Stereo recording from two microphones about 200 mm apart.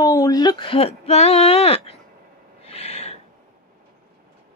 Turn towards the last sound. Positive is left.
turn(degrees=30)  # may be behind; listen again after turning